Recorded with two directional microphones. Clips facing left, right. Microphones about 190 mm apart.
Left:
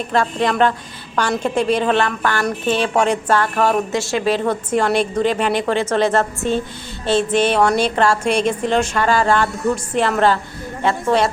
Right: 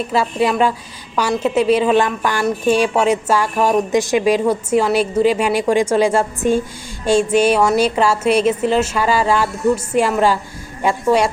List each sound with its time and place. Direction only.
0.1 s a woman's voice: 5° right (ahead or behind)